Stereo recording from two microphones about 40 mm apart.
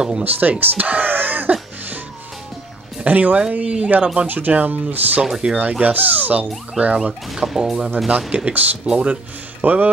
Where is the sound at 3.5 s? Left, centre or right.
Right.